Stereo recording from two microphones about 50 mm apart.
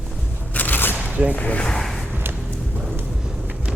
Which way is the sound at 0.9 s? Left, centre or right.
Right.